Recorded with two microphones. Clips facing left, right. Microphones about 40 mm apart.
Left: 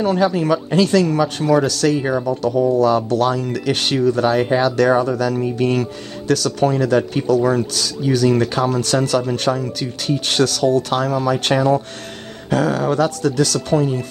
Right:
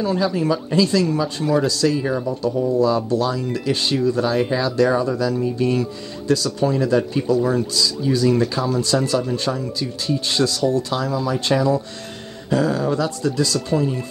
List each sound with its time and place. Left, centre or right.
0.0 s speech: left
2.0 s speech: left
2.2 s speech: left